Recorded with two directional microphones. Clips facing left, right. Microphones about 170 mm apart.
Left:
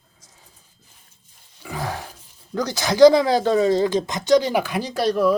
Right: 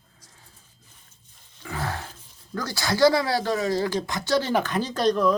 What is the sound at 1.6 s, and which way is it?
Speech, 15° left (ahead or behind).